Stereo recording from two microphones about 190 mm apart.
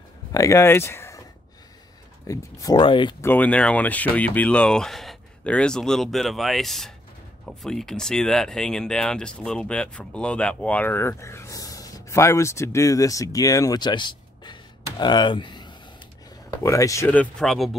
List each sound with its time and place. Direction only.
0.3 s speech: 15° left (ahead or behind)
2.2 s speech: 20° left (ahead or behind)
3.2 s speech: 10° left (ahead or behind)